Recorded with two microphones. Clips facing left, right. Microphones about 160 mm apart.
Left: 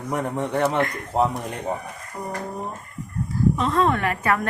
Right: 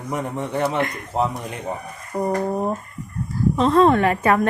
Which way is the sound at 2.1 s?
60° right (ahead or behind).